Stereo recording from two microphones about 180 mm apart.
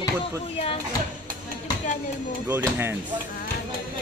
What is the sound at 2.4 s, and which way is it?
Speech, 15° right (ahead or behind).